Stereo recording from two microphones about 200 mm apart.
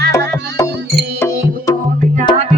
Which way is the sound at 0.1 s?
15° left (ahead or behind).